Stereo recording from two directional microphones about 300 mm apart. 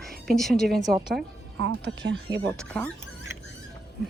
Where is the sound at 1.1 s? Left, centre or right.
Right.